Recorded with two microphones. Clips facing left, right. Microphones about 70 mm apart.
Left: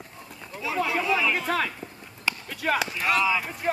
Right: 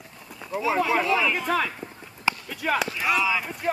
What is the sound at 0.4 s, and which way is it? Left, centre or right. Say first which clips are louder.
Speech: right 4 dB; centre.